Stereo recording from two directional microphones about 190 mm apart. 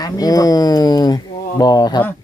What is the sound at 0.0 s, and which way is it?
Speech, 20° left (ahead or behind).